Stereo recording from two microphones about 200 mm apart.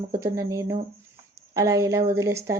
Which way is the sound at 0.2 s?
15° right (ahead or behind).